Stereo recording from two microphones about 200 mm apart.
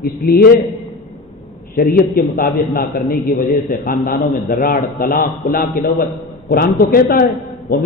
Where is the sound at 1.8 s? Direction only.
45° left (ahead or behind).